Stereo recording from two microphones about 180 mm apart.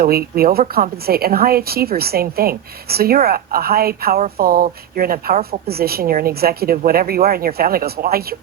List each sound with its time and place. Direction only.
0.0 s a woman's voice: 55° right (ahead or behind)